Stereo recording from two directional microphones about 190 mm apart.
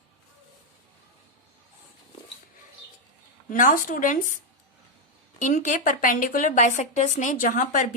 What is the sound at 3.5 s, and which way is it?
Speech, 45° left (ahead or behind).